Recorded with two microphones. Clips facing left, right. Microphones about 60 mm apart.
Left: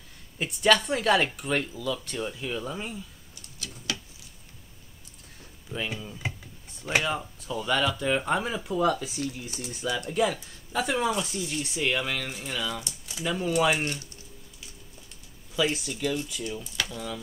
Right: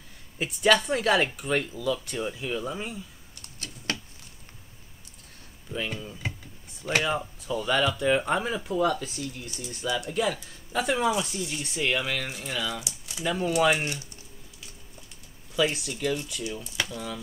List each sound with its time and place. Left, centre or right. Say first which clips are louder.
0.4 s speech: even; centre
3.5 s a sound: right 2 dB; right
5.7 s speech: right 1 dB; centre
15.5 s speech: right 1 dB; centre